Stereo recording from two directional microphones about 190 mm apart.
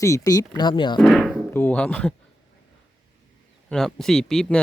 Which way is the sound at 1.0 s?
Centre (ahead or behind).